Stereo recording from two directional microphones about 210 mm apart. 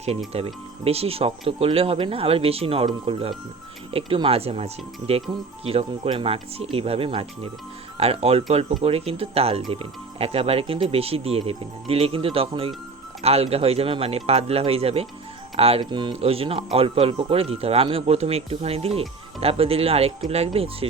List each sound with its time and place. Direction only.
0.3 s speech: 30° right (ahead or behind)